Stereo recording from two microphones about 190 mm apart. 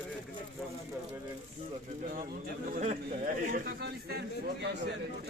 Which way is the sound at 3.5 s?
55° right (ahead or behind).